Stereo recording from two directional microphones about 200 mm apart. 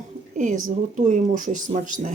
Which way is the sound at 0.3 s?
40° right (ahead or behind).